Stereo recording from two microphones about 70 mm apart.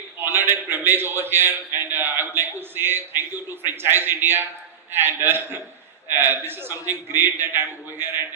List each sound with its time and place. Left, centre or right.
0.2 s a man's voice: right